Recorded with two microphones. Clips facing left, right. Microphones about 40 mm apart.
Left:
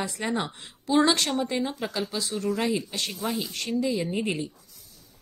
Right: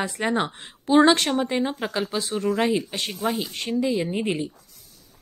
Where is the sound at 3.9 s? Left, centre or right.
Centre.